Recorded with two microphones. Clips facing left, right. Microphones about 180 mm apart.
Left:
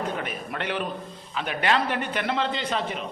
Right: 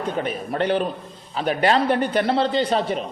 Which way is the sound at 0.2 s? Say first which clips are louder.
Right 8 dB; 35° right (ahead or behind).